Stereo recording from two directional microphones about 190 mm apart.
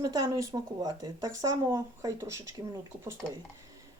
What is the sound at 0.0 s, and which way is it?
Speech, 20° right (ahead or behind).